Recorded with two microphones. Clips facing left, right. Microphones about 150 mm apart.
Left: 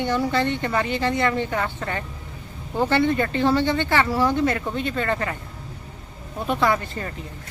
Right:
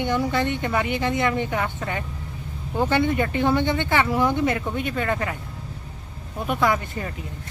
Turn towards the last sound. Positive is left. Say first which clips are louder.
# even
turn(degrees=-10)  # may be behind; listen again after turning